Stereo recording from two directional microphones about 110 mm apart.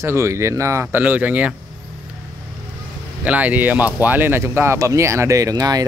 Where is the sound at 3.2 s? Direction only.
15° right (ahead or behind).